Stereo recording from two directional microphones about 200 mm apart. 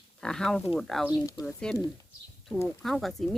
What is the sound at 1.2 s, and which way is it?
Speech, 15° left (ahead or behind).